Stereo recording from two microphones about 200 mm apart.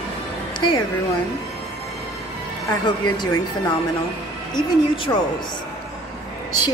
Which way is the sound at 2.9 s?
20° left (ahead or behind).